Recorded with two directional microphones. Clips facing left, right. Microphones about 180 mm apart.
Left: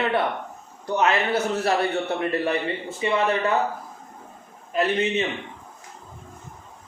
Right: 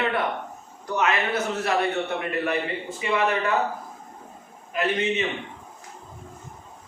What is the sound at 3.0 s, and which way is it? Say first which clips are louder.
Speech: left 2 dB; 30° left (ahead or behind).